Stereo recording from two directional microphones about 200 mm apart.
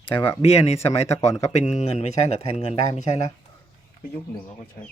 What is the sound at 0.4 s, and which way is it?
Speech, 30° left (ahead or behind).